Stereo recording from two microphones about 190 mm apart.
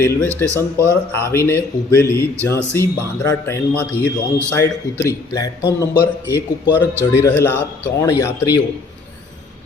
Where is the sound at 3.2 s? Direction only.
15° left (ahead or behind).